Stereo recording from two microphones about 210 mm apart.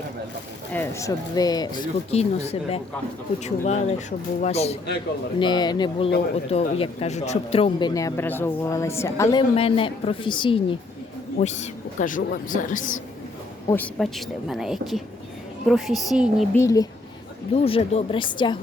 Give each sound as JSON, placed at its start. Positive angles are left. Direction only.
{"t": 0.7, "sound": "a man's voice", "side_deg": 10}
{"t": 9.6, "sound": "speech", "side_deg": 25}
{"t": 11.3, "sound": "speech", "side_deg": 35}
{"t": 13.7, "sound": "a woman's voice", "side_deg": 5}
{"t": 16.6, "sound": "a man's voice", "side_deg": 15}
{"t": 17.5, "sound": "speech", "side_deg": 25}